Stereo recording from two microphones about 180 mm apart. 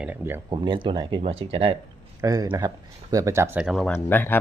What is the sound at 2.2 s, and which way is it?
Speech, 20° right (ahead or behind).